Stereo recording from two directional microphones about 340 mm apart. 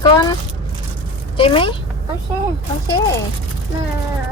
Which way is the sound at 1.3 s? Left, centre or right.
Centre.